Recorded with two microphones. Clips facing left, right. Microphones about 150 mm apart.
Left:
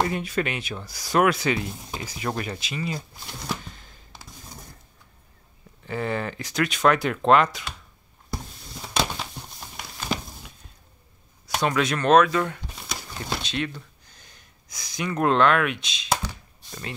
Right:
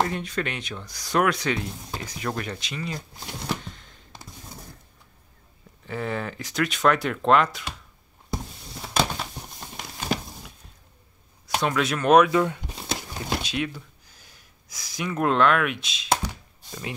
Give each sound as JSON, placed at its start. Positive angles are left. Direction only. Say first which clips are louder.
{"t": 0.0, "sound": "speech", "louder": "left 1 dB", "side_deg": 5}
{"t": 3.6, "sound": "a sound", "louder": "right 2 dB", "side_deg": 5}
{"t": 5.9, "sound": "speech", "louder": "left 2 dB", "side_deg": 0}
{"t": 8.7, "sound": "a sound", "louder": "right 1 dB", "side_deg": 0}
{"t": 11.4, "sound": "speech", "louder": "left 1 dB", "side_deg": 0}
{"t": 12.1, "sound": "speech", "louder": "right 1 dB", "side_deg": -15}